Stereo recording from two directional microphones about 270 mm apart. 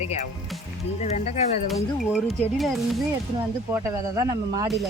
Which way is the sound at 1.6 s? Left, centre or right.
Centre.